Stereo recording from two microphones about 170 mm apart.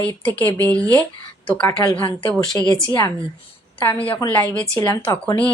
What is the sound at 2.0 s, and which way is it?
Speech, 30° left (ahead or behind).